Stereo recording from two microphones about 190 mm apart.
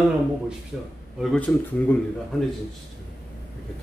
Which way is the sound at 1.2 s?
5° left (ahead or behind).